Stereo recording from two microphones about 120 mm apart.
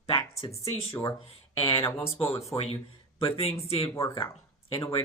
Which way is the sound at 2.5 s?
55° left (ahead or behind).